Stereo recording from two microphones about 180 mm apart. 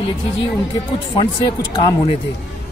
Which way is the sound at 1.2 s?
25° left (ahead or behind).